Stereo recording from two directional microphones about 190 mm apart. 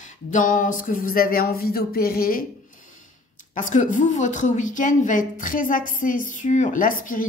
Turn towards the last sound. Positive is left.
turn(degrees=45)  # may be behind; listen again after turning